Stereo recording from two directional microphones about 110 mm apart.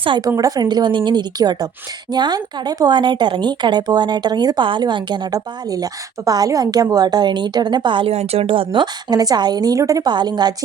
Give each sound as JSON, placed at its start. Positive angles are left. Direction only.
{"t": 0.2, "sound": "speech", "side_deg": -35}
{"t": 8.1, "sound": "speech", "side_deg": -70}